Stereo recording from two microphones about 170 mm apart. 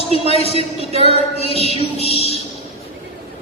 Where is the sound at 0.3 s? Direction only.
35° left (ahead or behind).